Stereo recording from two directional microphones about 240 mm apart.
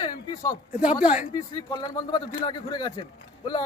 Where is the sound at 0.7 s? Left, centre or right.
Centre.